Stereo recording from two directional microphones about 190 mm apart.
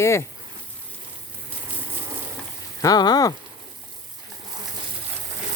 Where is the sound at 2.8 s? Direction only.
20° left (ahead or behind).